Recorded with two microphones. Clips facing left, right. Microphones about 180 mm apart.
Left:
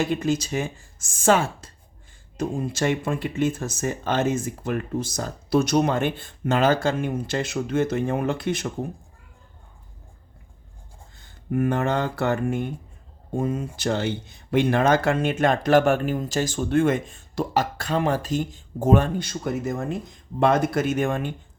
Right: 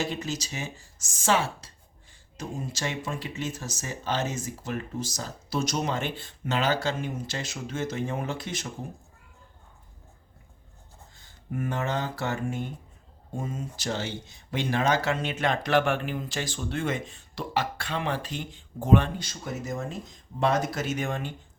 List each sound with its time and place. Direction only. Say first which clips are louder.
0.0 s speech: left 8 dB; 55° left (ahead or behind)
11.5 s speech: left 7 dB; 60° left (ahead or behind)